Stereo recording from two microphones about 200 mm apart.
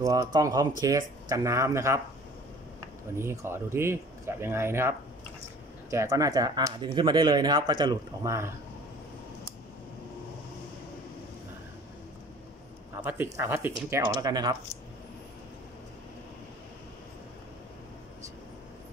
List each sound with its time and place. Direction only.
0.0 s speech: 15° right (ahead or behind)
3.2 s speech: 10° right (ahead or behind)
12.9 s speech: 10° right (ahead or behind)